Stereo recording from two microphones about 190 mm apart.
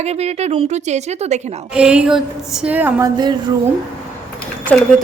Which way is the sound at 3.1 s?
20° right (ahead or behind).